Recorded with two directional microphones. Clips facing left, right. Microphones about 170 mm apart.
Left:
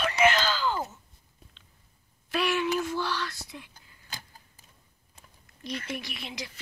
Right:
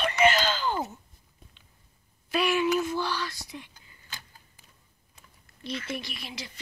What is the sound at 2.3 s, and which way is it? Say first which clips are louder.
Speech: right 2 dB; 5° right (ahead or behind).